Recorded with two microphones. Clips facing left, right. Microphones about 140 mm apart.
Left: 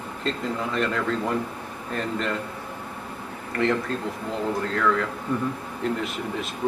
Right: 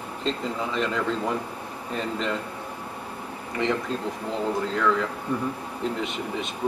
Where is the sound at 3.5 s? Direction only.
Centre (ahead or behind).